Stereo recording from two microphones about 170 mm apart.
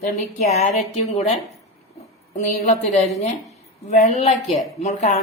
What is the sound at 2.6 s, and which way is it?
A woman's voice, 40° left (ahead or behind).